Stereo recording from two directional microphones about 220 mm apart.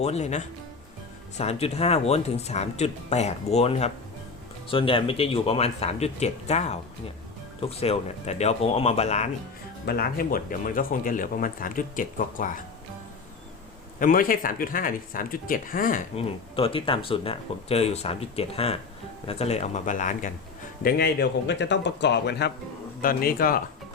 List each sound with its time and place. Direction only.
0.0 s speech: 30° left (ahead or behind)
9.8 s speech: 40° left (ahead or behind)
14.0 s speech: 40° left (ahead or behind)
16.1 s speech: 25° left (ahead or behind)
20.8 s a man's voice: 45° left (ahead or behind)